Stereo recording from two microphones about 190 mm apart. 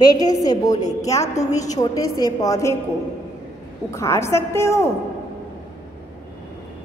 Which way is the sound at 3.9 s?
15° left (ahead or behind).